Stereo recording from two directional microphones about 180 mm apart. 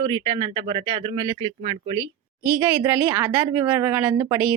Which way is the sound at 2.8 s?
10° right (ahead or behind).